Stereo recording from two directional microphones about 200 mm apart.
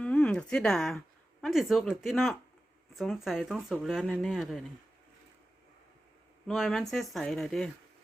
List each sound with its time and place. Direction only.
0.0 s speech: 5° left (ahead or behind)
6.5 s speech: centre (ahead or behind)